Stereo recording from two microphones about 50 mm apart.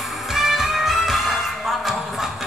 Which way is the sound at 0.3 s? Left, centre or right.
Centre.